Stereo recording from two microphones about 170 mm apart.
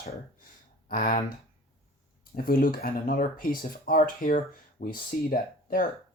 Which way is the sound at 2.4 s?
60° left (ahead or behind).